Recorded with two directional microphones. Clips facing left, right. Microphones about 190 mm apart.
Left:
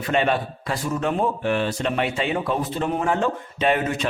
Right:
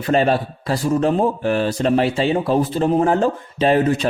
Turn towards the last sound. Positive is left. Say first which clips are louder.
# right 6 dB
turn(degrees=-35)  # may be behind; listen again after turning